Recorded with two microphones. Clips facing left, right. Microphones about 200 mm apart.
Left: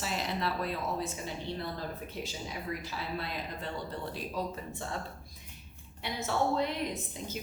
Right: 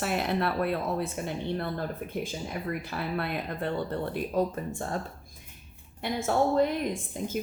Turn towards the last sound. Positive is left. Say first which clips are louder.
# right 5 dB
turn(degrees=-50)  # may be behind; listen again after turning